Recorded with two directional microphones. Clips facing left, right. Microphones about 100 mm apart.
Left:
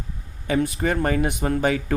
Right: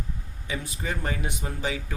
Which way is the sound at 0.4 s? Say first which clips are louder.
Left 11 dB; 60° left (ahead or behind).